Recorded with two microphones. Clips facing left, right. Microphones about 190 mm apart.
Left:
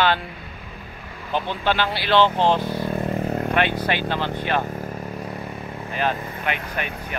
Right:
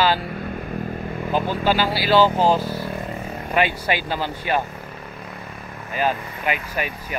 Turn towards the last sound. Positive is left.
turn(degrees=-5)  # may be behind; listen again after turning